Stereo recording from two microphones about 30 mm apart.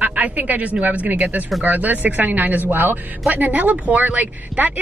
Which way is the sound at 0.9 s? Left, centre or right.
Right.